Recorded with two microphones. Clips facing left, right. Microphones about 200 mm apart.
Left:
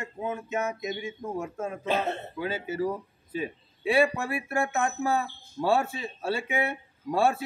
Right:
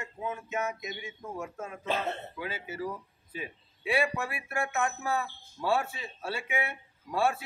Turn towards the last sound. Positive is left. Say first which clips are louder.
# left 4 dB
turn(degrees=30)  # may be behind; listen again after turning